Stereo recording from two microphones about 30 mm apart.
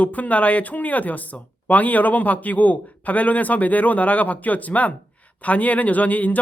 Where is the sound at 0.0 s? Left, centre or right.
Left.